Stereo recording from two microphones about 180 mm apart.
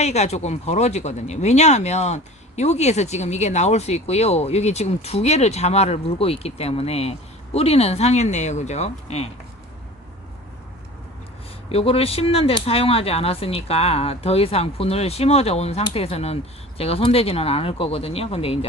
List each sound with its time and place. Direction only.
0.0 s speech: 40° left (ahead or behind)
11.7 s speech: 30° left (ahead or behind)